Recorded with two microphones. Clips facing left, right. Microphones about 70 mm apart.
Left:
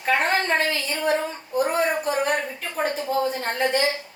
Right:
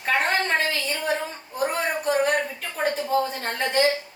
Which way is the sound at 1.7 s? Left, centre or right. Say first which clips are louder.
Left 1 dB; centre.